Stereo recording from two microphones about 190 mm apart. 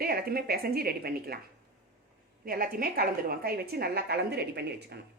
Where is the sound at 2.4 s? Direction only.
50° right (ahead or behind).